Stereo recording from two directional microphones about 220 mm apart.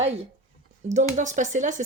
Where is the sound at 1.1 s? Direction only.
35° right (ahead or behind).